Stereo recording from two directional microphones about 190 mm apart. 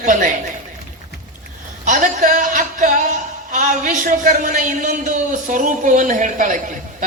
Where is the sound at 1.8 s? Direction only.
40° right (ahead or behind).